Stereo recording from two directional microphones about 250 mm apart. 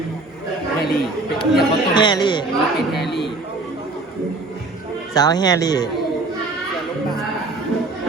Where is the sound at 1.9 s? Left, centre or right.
Centre.